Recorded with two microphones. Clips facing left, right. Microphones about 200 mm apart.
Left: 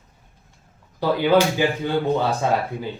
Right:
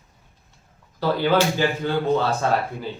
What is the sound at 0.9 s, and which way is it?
Speech, 15° left (ahead or behind).